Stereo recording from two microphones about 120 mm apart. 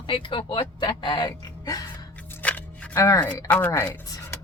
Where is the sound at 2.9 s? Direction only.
25° left (ahead or behind).